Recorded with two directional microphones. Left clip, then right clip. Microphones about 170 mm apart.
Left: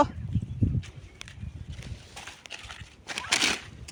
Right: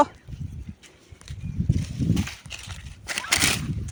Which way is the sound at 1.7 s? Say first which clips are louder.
Right 15 dB; 25° right (ahead or behind).